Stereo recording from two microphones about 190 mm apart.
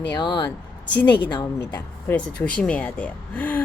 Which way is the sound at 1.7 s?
10° left (ahead or behind).